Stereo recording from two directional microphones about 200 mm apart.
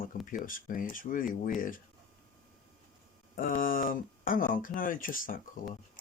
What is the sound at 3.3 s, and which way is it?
Speech, 45° left (ahead or behind).